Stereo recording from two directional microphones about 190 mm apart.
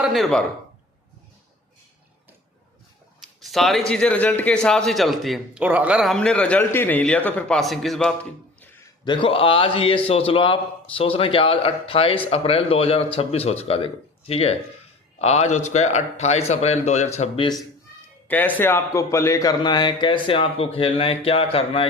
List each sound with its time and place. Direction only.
0.0 s speech: centre (ahead or behind)
3.2 s a man's voice: centre (ahead or behind)
9.0 s a man's voice: 25° left (ahead or behind)
18.3 s a man's voice: 10° left (ahead or behind); by 21.8 s 30° left (ahead or behind)